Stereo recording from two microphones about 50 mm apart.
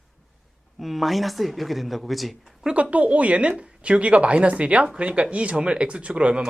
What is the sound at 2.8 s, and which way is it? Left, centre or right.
Speech, right.